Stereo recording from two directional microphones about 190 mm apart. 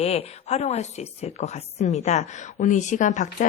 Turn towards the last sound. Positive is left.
turn(degrees=40)  # may be behind; listen again after turning